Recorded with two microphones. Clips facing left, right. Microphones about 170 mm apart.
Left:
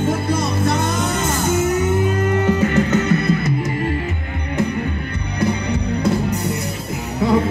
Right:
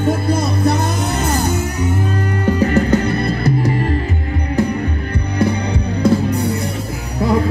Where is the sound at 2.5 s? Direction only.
35° right (ahead or behind).